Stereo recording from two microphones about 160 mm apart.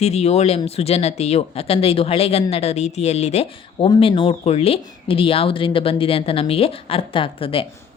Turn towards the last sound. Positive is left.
turn(degrees=35)  # may be behind; listen again after turning